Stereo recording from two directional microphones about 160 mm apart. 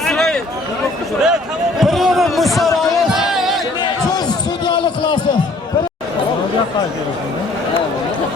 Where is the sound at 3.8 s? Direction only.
25° left (ahead or behind).